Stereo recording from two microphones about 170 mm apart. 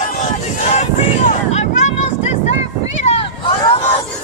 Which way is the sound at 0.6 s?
40° left (ahead or behind).